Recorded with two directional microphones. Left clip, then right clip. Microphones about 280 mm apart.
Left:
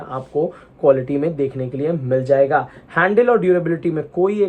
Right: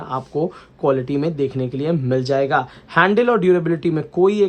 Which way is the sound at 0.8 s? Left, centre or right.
Centre.